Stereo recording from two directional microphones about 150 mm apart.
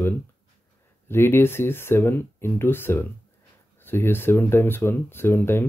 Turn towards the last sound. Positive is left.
turn(degrees=15)  # may be behind; listen again after turning